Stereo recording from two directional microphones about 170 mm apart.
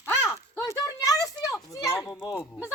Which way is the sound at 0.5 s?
20° left (ahead or behind).